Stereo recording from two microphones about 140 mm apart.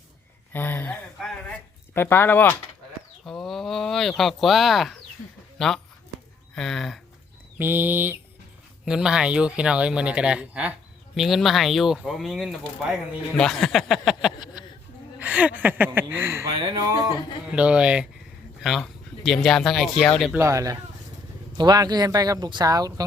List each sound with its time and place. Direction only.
0.5 s speech: 15° left (ahead or behind)
1.2 s a sound: 5° left (ahead or behind)
3.2 s a sound: centre (ahead or behind)
4.2 s speech: centre (ahead or behind)
7.6 s speech: 15° right (ahead or behind)
15.2 s speech: 10° right (ahead or behind)
16.6 s speech: 35° right (ahead or behind)
16.8 s speech: 25° right (ahead or behind)
17.5 s speech: 10° right (ahead or behind)
20.3 s speech: 20° right (ahead or behind)